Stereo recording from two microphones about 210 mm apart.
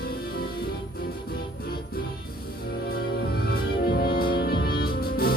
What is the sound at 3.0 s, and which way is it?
Music, 50° left (ahead or behind).